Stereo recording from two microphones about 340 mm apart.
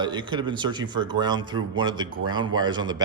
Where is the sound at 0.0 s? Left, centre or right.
Centre.